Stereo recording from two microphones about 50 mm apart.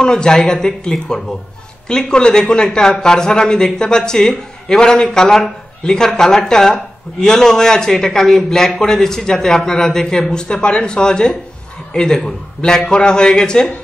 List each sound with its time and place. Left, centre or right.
0.0 s speech: centre